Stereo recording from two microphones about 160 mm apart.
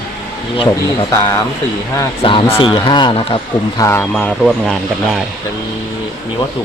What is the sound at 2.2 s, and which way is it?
Speech, 30° left (ahead or behind).